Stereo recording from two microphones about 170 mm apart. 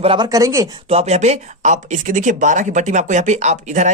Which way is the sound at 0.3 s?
20° right (ahead or behind).